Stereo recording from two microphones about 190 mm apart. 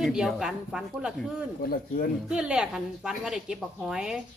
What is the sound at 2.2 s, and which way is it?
A woman's voice, 5° right (ahead or behind).